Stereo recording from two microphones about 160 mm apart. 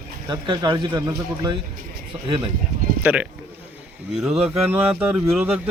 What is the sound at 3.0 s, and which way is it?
Speech, 10° right (ahead or behind).